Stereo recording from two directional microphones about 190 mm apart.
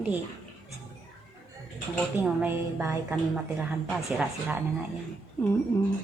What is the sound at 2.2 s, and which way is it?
Speech, 5° right (ahead or behind).